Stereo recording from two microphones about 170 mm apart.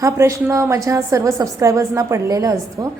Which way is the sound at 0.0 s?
20° right (ahead or behind).